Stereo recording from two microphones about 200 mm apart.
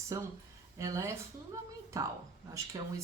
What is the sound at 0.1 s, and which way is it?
A woman's voice, 15° right (ahead or behind).